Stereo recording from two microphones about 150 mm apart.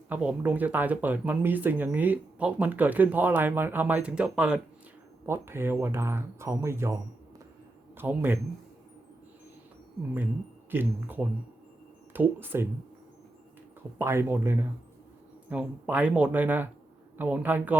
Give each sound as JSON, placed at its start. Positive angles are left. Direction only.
{"t": 0.1, "sound": "speech", "side_deg": -10}
{"t": 10.7, "sound": "speech", "side_deg": -15}
{"t": 14.0, "sound": "speech", "side_deg": -15}